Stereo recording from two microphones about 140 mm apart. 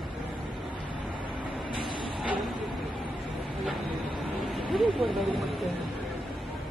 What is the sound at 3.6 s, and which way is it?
Vehicle, centre (ahead or behind).